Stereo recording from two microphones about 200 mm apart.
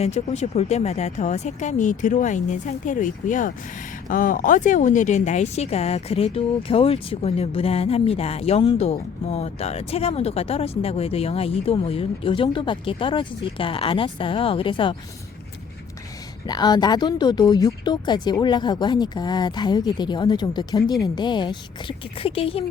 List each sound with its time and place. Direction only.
0.0 s speech: 35° left (ahead or behind)
16.5 s speech: 20° left (ahead or behind)